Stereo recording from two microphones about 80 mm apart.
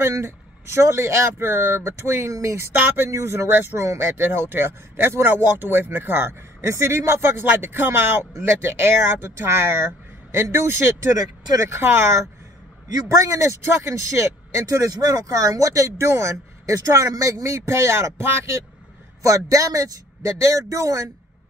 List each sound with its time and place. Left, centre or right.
0.0 s speech: right
4.2 s speech: right
13.1 s speech: right